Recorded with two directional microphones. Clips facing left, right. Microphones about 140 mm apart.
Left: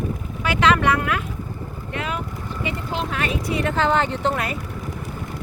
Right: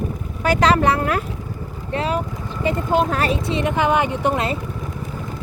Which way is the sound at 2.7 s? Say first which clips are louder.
Right 9 dB; 45° right (ahead or behind).